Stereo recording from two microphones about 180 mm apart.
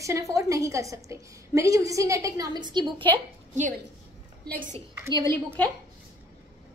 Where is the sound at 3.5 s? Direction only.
45° right (ahead or behind).